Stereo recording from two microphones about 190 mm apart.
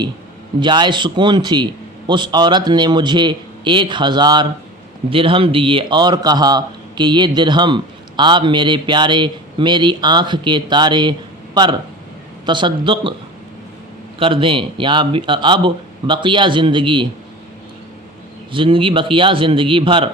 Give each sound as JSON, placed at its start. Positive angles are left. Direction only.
{"t": 0.6, "sound": "a man's voice", "side_deg": -25}
{"t": 14.2, "sound": "a man's voice", "side_deg": -25}
{"t": 18.5, "sound": "a man's voice", "side_deg": -25}